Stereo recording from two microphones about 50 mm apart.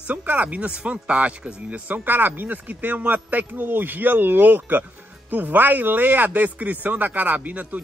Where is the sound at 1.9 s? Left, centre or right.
Right.